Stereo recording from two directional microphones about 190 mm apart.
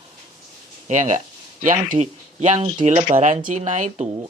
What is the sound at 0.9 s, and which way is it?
Speech, 40° right (ahead or behind).